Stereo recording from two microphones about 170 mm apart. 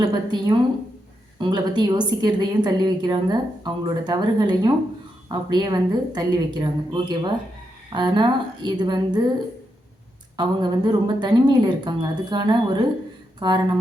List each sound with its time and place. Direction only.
0.0 s a woman's voice: 25° right (ahead or behind)
10.3 s a woman's voice: 25° right (ahead or behind)